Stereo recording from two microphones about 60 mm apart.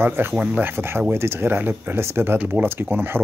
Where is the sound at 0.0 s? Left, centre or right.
Right.